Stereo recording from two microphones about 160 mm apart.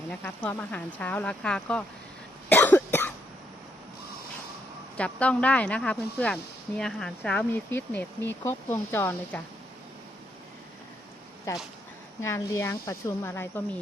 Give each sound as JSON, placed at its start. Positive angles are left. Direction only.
{"t": 0.2, "sound": "speech", "side_deg": 10}
{"t": 2.5, "sound": "cough", "side_deg": 10}
{"t": 4.9, "sound": "speech", "side_deg": 5}
{"t": 12.2, "sound": "speech", "side_deg": 15}